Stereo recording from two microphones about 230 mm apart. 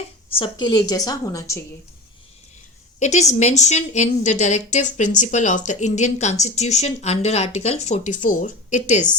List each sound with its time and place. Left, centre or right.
0.3 s a woman's voice: left
3.0 s a woman's voice: left